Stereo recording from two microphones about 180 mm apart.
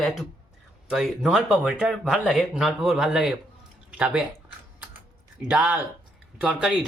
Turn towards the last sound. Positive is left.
turn(degrees=-5)  # may be behind; listen again after turning